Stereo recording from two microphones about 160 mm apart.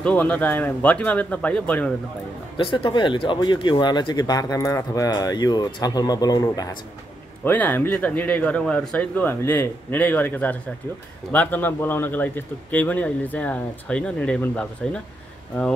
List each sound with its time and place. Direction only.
0.0 s a man's voice: 10° left (ahead or behind)
2.5 s speech: 30° left (ahead or behind)
7.4 s a man's voice: 10° left (ahead or behind)